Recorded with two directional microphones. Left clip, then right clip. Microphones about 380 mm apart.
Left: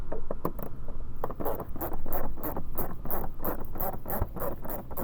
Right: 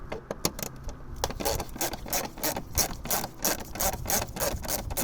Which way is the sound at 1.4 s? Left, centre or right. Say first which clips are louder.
Right 3 dB; right.